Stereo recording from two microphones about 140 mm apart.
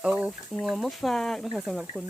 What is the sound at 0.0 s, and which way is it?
Speech, 5° right (ahead or behind).